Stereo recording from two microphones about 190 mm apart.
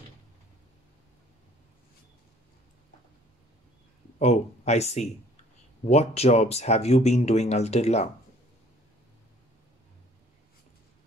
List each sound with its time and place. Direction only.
4.2 s speech: 35° left (ahead or behind)